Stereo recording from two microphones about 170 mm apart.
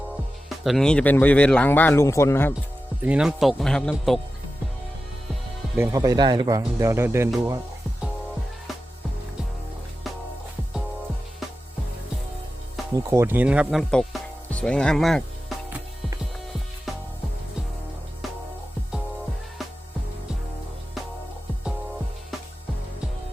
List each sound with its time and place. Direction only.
0.6 s a man's voice: centre (ahead or behind)
3.0 s speech: 5° right (ahead or behind)
5.7 s speech: 15° right (ahead or behind)
13.0 s speech: 15° right (ahead or behind); by 15.5 s centre (ahead or behind)